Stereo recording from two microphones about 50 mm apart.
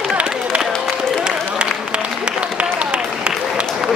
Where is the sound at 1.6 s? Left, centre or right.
Right.